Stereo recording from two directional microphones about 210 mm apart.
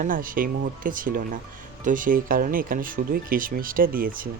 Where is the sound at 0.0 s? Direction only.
40° right (ahead or behind).